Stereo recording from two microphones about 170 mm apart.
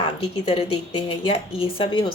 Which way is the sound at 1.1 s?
35° left (ahead or behind).